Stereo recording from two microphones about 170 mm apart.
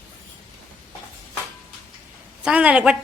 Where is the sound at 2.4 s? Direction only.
5° right (ahead or behind).